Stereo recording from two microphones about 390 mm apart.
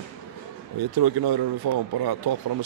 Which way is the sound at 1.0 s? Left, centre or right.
Right.